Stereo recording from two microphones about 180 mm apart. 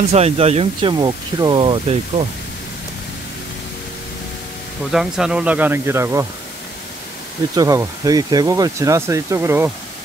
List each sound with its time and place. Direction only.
0.1 s speech: 35° right (ahead or behind)
4.9 s speech: 5° right (ahead or behind)
7.5 s speech: 15° right (ahead or behind)